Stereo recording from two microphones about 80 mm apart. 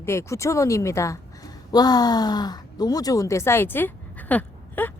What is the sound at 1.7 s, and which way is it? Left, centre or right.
Speech, left.